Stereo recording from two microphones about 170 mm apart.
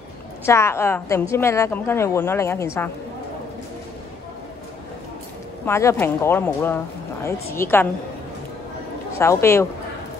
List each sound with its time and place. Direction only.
0.5 s a woman's voice: 15° left (ahead or behind)
5.7 s a woman's voice: 15° left (ahead or behind)
9.2 s a woman's voice: 15° left (ahead or behind)